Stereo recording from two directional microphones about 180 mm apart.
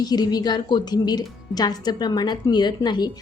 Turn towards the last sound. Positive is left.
turn(degrees=25)  # may be behind; listen again after turning